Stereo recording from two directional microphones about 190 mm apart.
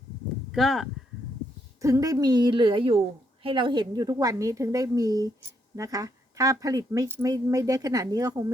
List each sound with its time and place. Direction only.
0.5 s speech: centre (ahead or behind)
1.8 s a woman's voice: 15° right (ahead or behind)